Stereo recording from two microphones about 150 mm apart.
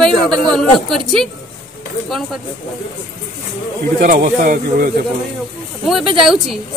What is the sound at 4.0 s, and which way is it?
Speech, 65° right (ahead or behind).